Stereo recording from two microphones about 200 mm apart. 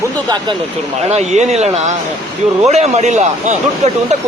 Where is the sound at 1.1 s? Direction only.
35° right (ahead or behind).